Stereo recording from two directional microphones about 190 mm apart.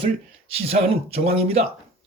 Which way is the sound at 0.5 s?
30° right (ahead or behind).